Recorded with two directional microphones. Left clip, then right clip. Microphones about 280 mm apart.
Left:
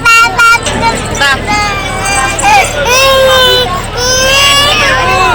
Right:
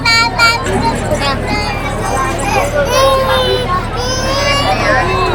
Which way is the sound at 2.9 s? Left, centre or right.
Centre.